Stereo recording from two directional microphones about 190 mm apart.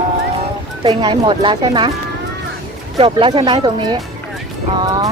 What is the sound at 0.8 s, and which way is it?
Speech, 30° right (ahead or behind).